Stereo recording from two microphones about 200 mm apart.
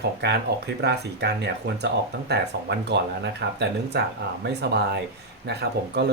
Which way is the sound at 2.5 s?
60° right (ahead or behind).